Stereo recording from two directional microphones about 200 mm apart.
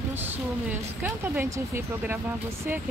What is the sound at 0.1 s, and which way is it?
A woman's voice, 10° right (ahead or behind).